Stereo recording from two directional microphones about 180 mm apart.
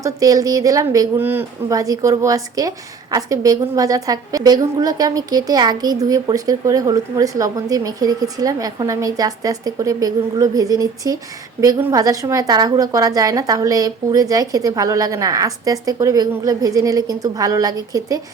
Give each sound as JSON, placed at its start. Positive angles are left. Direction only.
{"t": 0.0, "sound": "a woman's voice", "side_deg": -20}